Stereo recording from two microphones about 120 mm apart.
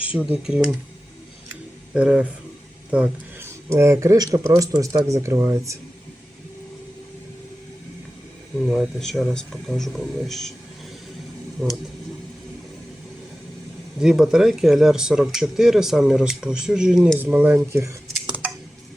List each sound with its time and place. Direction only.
0.0 s speech: 10° right (ahead or behind)
1.9 s speech: 10° right (ahead or behind)
3.4 s speech: 25° right (ahead or behind)
8.6 s speech: 5° right (ahead or behind)
11.6 s speech: centre (ahead or behind)
14.0 s speech: 5° right (ahead or behind); by 17.9 s 20° right (ahead or behind)